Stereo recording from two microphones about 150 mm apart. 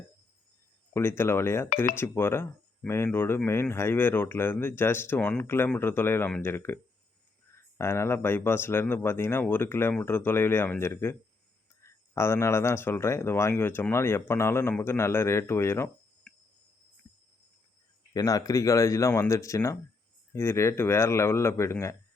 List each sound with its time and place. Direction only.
0.9 s speech: 15° left (ahead or behind)
18.1 s speech: 25° left (ahead or behind)